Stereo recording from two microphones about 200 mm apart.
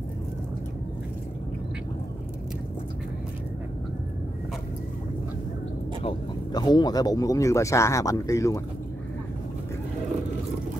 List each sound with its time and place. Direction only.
6.0 s speech: 20° left (ahead or behind)